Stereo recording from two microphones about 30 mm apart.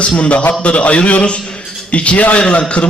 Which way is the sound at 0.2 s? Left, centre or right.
Left.